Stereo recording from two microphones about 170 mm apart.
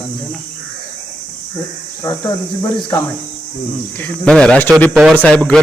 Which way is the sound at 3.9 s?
10° left (ahead or behind).